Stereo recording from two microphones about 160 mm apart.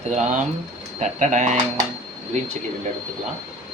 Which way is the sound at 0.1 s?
50° right (ahead or behind).